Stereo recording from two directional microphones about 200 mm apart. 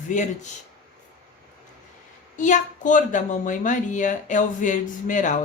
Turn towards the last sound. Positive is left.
turn(degrees=40)  # may be behind; listen again after turning